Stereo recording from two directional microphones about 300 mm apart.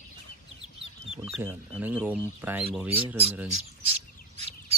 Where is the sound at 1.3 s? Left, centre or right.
Centre.